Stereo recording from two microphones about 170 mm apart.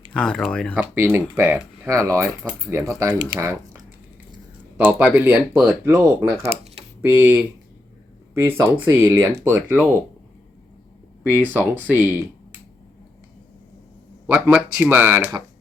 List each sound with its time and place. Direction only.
0.1 s speech: 5° left (ahead or behind)
0.8 s speech: 15° right (ahead or behind)
4.8 s speech: 5° right (ahead or behind)
6.4 s a sound: 40° right (ahead or behind)
7.0 s speech: 10° right (ahead or behind)
11.2 s speech: 10° right (ahead or behind)
14.3 s speech: 5° right (ahead or behind)